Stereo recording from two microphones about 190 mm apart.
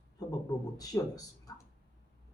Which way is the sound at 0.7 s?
20° left (ahead or behind).